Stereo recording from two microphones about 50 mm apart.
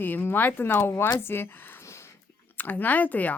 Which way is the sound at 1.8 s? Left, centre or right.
Left.